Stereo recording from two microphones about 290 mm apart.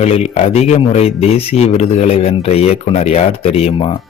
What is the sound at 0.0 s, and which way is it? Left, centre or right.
Speech, left.